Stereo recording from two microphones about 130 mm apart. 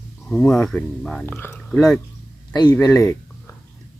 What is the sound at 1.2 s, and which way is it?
Speech, 15° left (ahead or behind).